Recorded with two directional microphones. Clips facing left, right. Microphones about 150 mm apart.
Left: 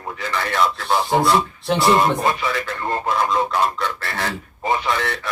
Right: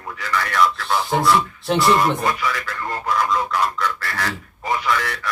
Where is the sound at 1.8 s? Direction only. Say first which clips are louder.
Left 1 dB; 25° left (ahead or behind).